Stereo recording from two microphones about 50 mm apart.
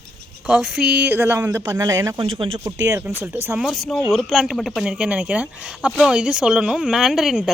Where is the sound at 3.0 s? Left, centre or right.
Right.